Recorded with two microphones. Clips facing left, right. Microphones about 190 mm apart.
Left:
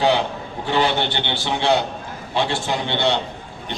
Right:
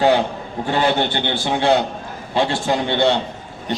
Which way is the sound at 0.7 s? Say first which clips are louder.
Right 2 dB; 45° right (ahead or behind).